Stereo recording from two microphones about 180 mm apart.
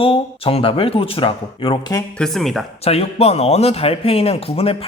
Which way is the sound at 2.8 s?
35° left (ahead or behind).